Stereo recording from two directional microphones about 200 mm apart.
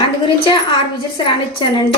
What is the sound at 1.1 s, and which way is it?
Speech, 25° left (ahead or behind).